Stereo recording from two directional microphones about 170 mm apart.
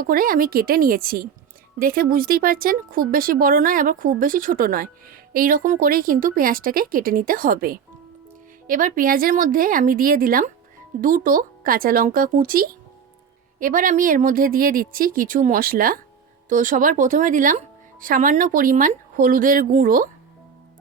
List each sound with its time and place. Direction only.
0.0 s speech: 55° right (ahead or behind)